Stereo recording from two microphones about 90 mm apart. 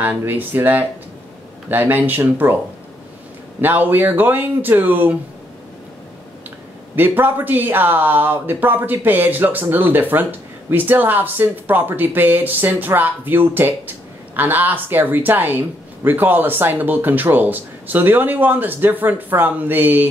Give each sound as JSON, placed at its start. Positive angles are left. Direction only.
{"t": 0.0, "sound": "speech", "side_deg": -20}
{"t": 3.6, "sound": "speech", "side_deg": -20}
{"t": 7.0, "sound": "speech", "side_deg": -20}